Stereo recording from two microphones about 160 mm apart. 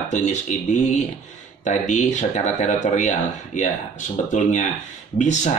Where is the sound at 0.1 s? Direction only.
50° left (ahead or behind).